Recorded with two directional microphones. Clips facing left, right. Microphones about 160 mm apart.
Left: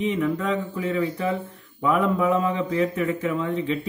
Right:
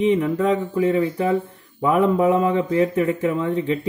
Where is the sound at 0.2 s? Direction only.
30° right (ahead or behind).